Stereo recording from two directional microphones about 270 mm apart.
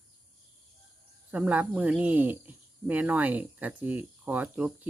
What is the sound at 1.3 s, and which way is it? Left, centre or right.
Speech, centre.